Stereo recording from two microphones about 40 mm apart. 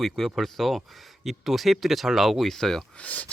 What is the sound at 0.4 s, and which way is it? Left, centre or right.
Speech, centre.